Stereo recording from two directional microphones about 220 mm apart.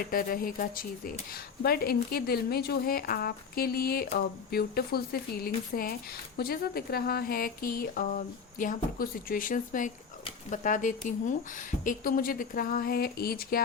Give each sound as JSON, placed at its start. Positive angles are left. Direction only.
{"t": 0.1, "sound": "speech", "side_deg": 40}